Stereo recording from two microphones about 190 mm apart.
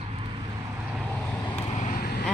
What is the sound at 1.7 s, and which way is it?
Vehicle, 40° left (ahead or behind).